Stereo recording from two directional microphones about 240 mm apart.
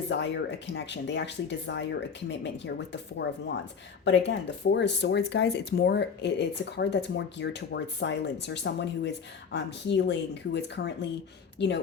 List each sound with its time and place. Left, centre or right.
0.1 s speech: left